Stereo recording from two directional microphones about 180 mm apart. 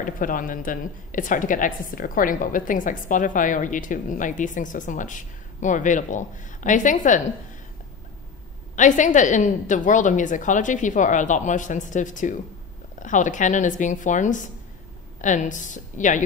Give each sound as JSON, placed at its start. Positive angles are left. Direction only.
{"t": 0.0, "sound": "a woman's voice", "side_deg": 50}
{"t": 8.7, "sound": "a woman's voice", "side_deg": 45}